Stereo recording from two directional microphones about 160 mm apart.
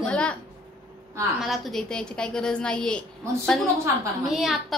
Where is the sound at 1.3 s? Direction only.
Centre (ahead or behind).